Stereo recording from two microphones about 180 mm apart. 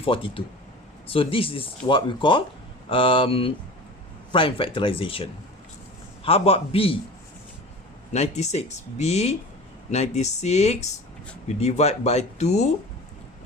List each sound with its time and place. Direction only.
0.0 s a man's voice: 30° left (ahead or behind)
8.1 s speech: 40° left (ahead or behind)